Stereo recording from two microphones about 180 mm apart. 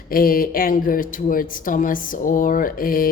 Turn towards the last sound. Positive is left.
turn(degrees=50)  # may be behind; listen again after turning